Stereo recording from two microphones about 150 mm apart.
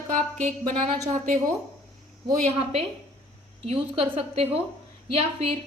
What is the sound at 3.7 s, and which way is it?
A woman's voice, 40° right (ahead or behind).